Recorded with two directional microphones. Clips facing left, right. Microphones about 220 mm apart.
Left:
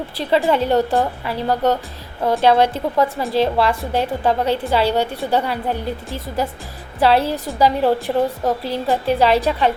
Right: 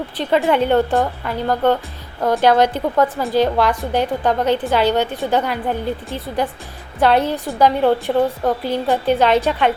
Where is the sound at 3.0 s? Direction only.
Centre (ahead or behind).